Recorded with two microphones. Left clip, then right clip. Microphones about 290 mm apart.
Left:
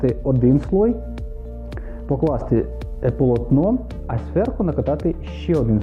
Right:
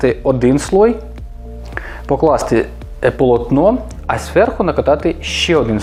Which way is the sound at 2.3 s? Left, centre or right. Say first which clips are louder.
Right 7 dB; centre.